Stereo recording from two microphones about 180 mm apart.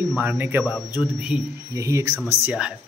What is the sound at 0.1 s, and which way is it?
Speech, 10° right (ahead or behind).